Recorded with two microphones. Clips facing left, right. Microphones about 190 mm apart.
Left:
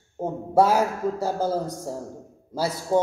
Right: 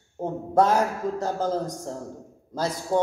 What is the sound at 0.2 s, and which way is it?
Speech, 10° left (ahead or behind).